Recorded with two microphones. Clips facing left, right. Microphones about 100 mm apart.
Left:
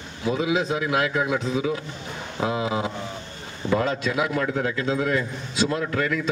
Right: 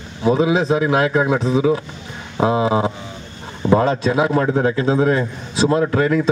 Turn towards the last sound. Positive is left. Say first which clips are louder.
# right 8 dB
turn(degrees=-35)  # may be behind; listen again after turning